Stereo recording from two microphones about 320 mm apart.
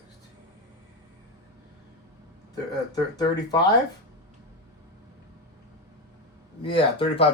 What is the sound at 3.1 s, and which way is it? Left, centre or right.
Speech, centre.